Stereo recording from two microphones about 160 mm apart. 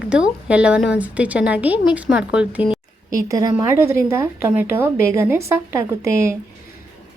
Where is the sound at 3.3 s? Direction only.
25° right (ahead or behind).